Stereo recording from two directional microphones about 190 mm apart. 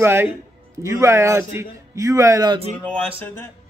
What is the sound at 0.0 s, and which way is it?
A man's voice, 10° right (ahead or behind).